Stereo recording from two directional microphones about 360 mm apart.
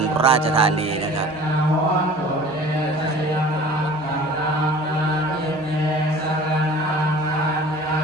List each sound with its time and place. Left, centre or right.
0.2 s music: centre